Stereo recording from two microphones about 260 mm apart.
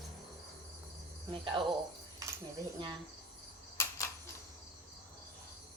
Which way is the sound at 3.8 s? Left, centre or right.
Centre.